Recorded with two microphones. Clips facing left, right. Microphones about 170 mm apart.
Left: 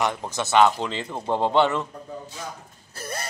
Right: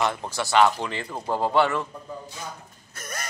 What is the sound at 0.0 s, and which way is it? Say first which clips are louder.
Speech: even; 15° left (ahead or behind).